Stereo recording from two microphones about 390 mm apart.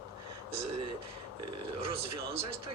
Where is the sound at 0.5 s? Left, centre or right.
Right.